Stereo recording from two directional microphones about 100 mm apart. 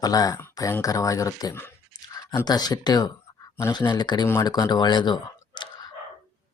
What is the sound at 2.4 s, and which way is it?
Speech, 40° left (ahead or behind).